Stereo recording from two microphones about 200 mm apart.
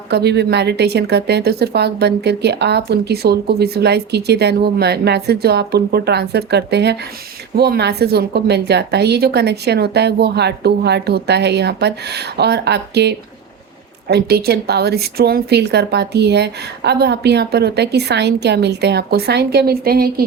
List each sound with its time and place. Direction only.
0.1 s a woman's voice: 55° right (ahead or behind)